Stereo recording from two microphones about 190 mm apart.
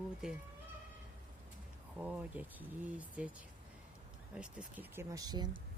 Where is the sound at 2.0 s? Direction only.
10° right (ahead or behind).